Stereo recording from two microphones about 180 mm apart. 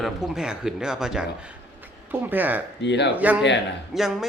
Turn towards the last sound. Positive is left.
turn(degrees=0)  # may be behind; listen again after turning